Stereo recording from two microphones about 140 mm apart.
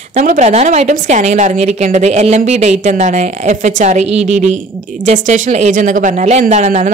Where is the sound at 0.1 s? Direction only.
55° right (ahead or behind).